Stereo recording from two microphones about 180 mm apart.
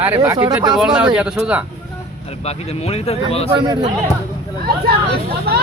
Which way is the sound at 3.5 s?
25° right (ahead or behind).